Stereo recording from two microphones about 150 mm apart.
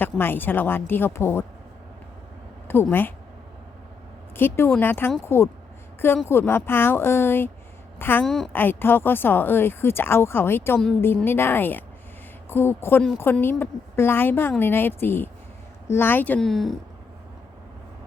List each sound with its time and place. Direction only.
0.0 s speech: 15° left (ahead or behind)
2.6 s speech: 15° left (ahead or behind)
4.4 s a woman's voice: 15° left (ahead or behind)
8.2 s a woman's voice: centre (ahead or behind)
8.5 s speech: 15° left (ahead or behind)